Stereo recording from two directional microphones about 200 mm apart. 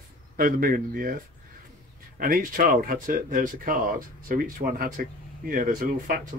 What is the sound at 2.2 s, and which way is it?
Speech, 45° right (ahead or behind).